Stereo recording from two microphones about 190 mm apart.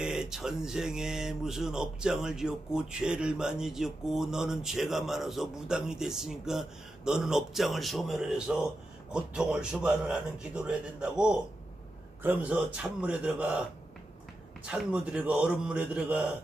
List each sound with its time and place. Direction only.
0.0 s a man's voice: 5° right (ahead or behind)
14.7 s speech: 5° right (ahead or behind)